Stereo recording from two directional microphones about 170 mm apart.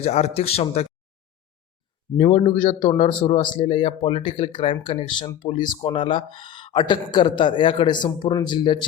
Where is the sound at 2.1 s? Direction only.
35° left (ahead or behind).